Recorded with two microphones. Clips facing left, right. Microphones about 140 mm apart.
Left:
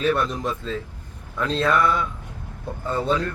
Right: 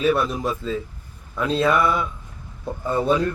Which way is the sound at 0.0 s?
5° right (ahead or behind).